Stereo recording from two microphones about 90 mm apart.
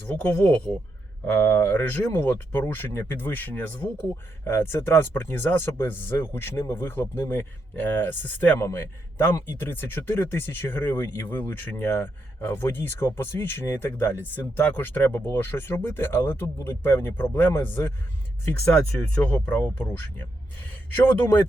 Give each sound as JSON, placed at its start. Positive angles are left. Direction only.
{"t": 0.4, "sound": "speech", "side_deg": 10}
{"t": 1.3, "sound": "speech", "side_deg": 25}
{"t": 18.7, "sound": "speech", "side_deg": 10}
{"t": 19.3, "sound": "speech", "side_deg": 20}